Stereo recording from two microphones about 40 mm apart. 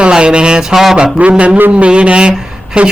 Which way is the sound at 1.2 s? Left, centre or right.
Right.